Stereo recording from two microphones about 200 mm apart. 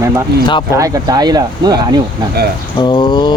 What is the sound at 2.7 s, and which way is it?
Speech, 20° left (ahead or behind).